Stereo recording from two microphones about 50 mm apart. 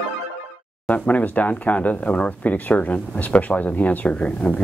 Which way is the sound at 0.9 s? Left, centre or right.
Left.